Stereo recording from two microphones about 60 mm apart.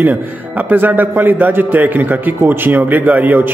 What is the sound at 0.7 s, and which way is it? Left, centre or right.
A man's voice, right.